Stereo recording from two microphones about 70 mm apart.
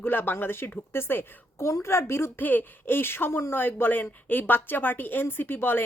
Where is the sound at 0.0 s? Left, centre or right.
Left.